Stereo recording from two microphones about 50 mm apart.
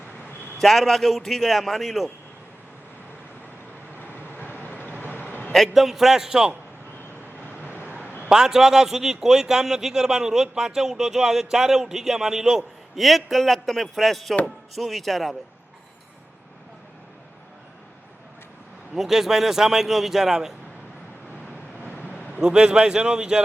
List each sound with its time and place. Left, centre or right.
0.6 s a man's voice: centre
4.3 s vehicle: left
5.6 s a man's voice: centre
7.6 s vehicle: right
8.3 s a man's voice: centre
18.9 s a man's voice: centre
22.0 s vehicle: right
22.4 s a man's voice: centre